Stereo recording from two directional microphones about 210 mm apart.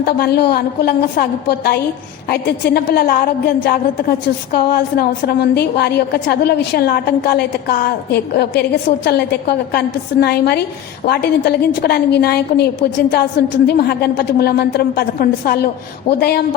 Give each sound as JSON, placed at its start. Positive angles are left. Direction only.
{"t": 0.0, "sound": "a woman's voice", "side_deg": 50}
{"t": 16.1, "sound": "speech", "side_deg": 25}